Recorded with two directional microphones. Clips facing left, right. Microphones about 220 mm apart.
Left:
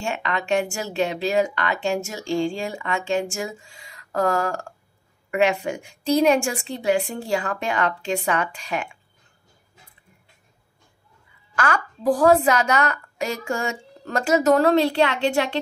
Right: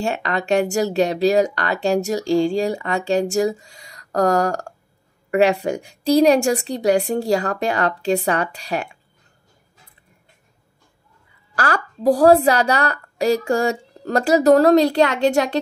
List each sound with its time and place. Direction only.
0.0 s a woman's voice: 35° right (ahead or behind)
11.5 s a woman's voice: 35° right (ahead or behind)